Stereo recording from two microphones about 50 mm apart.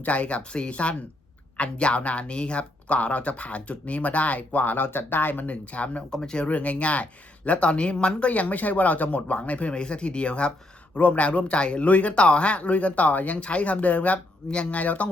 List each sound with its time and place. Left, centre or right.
0.0 s speech: left
6.1 s speech: centre
6.4 s speech: left